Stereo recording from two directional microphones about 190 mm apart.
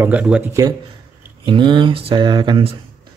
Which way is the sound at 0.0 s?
5° right (ahead or behind).